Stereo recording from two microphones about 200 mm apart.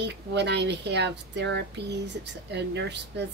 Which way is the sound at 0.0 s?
60° right (ahead or behind).